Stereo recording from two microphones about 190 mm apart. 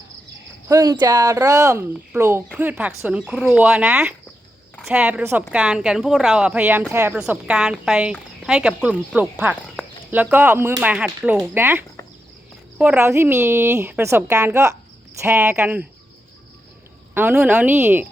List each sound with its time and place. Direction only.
0.7 s speech: 20° right (ahead or behind)
17.2 s speech: 10° right (ahead or behind)